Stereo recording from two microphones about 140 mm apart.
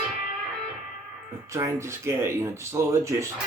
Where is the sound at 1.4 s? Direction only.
20° right (ahead or behind).